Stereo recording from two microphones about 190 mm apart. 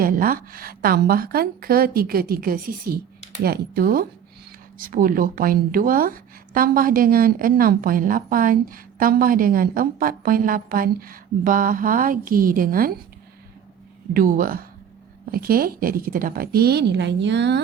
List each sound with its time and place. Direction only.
0.0 s speech: 50° right (ahead or behind)
14.1 s speech: 45° right (ahead or behind); by 17.6 s 65° right (ahead or behind)